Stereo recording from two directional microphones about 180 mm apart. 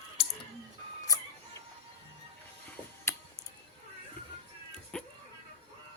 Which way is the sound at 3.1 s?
15° left (ahead or behind).